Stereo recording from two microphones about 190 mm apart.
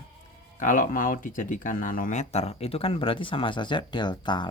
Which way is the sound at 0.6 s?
45° left (ahead or behind).